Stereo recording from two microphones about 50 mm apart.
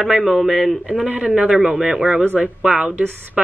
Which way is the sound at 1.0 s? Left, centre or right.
Right.